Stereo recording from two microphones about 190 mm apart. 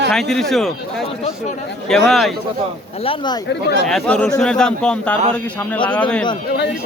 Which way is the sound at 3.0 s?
30° left (ahead or behind).